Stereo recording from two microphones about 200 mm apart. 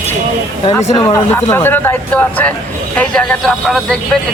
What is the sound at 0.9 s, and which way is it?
Speech, 15° left (ahead or behind).